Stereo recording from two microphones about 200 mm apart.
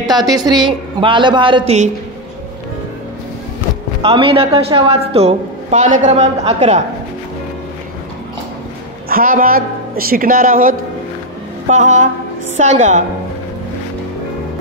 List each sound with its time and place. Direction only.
0.0 s a man's voice: 20° right (ahead or behind)
4.0 s a woman's voice: 25° right (ahead or behind)
9.1 s a woman's voice: 45° right (ahead or behind)